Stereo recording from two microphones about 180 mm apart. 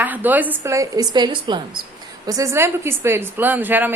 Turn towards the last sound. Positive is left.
turn(degrees=-10)  # may be behind; listen again after turning